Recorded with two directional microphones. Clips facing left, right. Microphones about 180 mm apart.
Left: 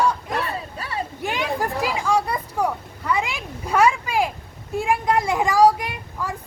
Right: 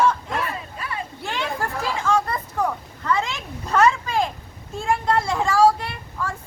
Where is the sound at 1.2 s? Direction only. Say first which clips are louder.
Left 3 dB; 15° left (ahead or behind).